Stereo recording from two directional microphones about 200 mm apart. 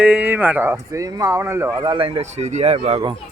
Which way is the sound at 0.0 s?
5° right (ahead or behind).